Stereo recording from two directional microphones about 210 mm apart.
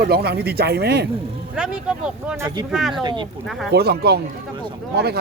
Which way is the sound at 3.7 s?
50° right (ahead or behind).